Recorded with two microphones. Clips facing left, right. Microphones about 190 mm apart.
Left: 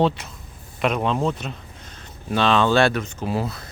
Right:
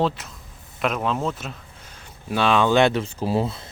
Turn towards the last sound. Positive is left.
turn(degrees=-25)  # may be behind; listen again after turning